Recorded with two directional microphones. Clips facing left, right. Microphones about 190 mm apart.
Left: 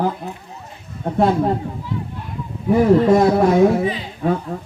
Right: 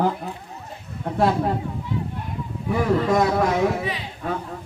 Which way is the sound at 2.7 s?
30° left (ahead or behind).